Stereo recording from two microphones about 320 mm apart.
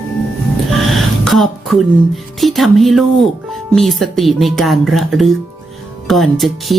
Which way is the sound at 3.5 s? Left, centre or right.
Centre.